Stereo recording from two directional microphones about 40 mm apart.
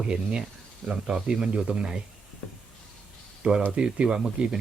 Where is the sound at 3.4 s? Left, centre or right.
Right.